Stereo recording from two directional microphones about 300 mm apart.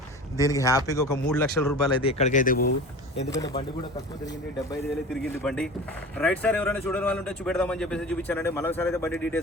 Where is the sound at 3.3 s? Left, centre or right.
Centre.